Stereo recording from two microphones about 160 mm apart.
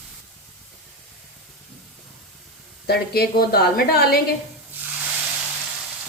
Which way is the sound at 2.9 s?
80° left.